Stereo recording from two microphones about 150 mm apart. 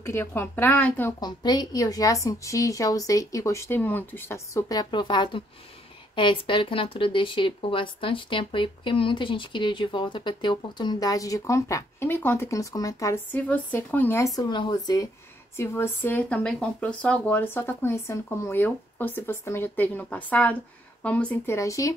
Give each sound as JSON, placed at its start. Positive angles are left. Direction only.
{"t": 0.0, "sound": "speech", "side_deg": 15}
{"t": 1.2, "sound": "a woman's voice", "side_deg": 30}
{"t": 15.5, "sound": "speech", "side_deg": 15}